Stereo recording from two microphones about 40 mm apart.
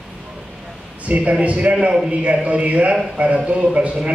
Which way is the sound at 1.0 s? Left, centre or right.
Right.